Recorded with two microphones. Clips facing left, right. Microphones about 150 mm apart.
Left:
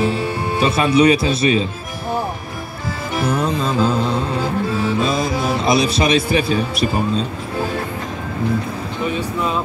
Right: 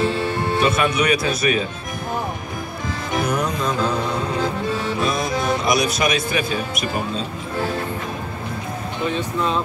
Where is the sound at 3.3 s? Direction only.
30° left (ahead or behind).